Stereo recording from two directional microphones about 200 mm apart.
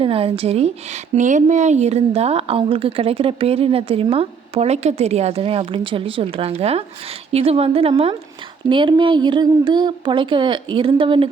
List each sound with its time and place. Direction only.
0.0 s a woman's voice: 30° right (ahead or behind)